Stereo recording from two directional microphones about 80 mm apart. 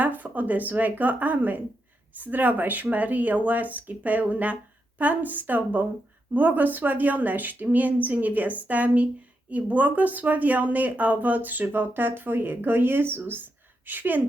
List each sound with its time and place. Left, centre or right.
0.0 s speech: right